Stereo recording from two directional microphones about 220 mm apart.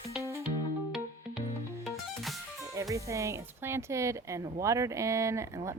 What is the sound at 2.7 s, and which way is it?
Speech, 15° right (ahead or behind).